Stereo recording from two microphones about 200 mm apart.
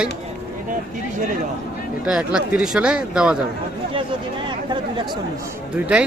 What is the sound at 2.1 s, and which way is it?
Speech, 5° right (ahead or behind).